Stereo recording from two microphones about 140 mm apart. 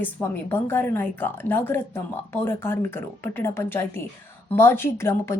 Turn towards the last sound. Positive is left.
turn(degrees=20)  # may be behind; listen again after turning